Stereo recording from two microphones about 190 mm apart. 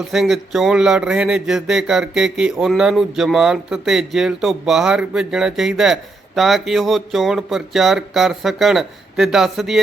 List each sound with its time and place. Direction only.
0.1 s speech: centre (ahead or behind)